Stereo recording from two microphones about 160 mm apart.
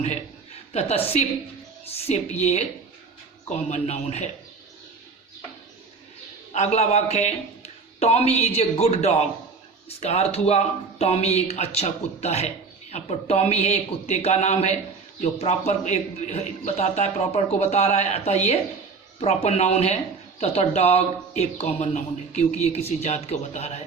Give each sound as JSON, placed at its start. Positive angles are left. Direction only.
{"t": 0.7, "sound": "speech", "side_deg": 40}
{"t": 3.7, "sound": "speech", "side_deg": 45}
{"t": 6.5, "sound": "a man's voice", "side_deg": 45}